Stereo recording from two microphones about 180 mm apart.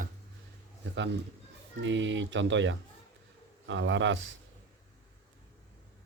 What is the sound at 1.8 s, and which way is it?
Speech, 90° right.